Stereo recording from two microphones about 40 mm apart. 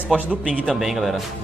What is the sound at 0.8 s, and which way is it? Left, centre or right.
Speech, centre.